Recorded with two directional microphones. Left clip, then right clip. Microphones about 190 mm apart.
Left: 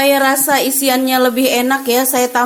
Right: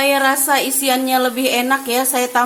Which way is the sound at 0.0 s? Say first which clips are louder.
Left 3 dB; 20° left (ahead or behind).